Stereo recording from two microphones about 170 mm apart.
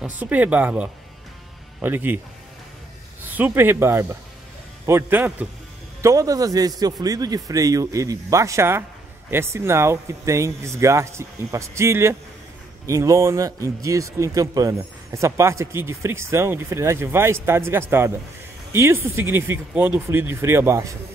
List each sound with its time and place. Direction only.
0.0 s a man's voice: 10° right (ahead or behind)
3.3 s a man's voice: 10° right (ahead or behind)